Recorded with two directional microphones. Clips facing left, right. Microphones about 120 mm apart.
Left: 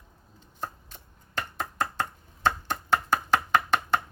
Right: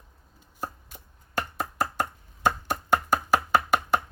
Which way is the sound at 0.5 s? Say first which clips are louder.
Right 1 dB; 10° right (ahead or behind).